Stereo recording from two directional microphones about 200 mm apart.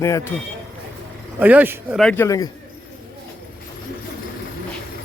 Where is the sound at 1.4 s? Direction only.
10° right (ahead or behind).